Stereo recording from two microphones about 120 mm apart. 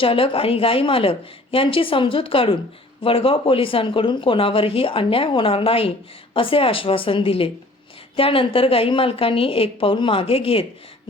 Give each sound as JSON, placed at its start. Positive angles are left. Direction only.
{"t": 0.0, "sound": "speech", "side_deg": 50}